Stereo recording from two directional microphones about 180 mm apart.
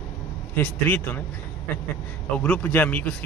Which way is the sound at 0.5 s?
10° left (ahead or behind).